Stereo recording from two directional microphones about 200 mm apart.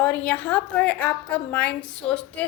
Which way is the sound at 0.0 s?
5° left (ahead or behind).